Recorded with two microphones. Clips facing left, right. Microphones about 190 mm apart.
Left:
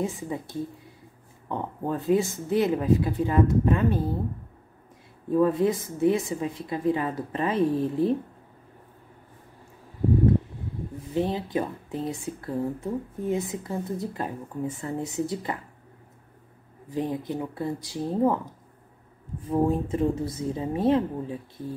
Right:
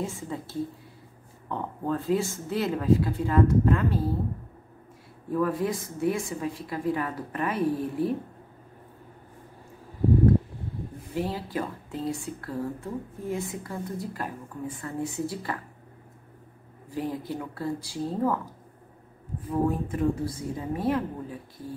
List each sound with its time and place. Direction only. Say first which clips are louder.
0.0 s speech: left 3 dB; 20° left (ahead or behind)
5.3 s speech: left 5 dB; 25° left (ahead or behind)
11.1 s speech: left 4 dB; 20° left (ahead or behind)
16.9 s speech: left 3 dB; 20° left (ahead or behind)
19.5 s speech: left 3 dB; 25° left (ahead or behind)